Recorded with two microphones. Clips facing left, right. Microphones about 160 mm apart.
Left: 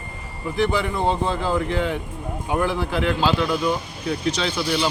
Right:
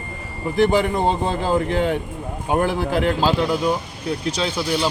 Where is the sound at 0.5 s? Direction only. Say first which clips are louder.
Right 5 dB; 50° right (ahead or behind).